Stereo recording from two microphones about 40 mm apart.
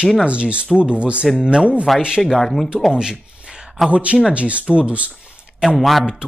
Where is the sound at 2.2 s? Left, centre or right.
Centre.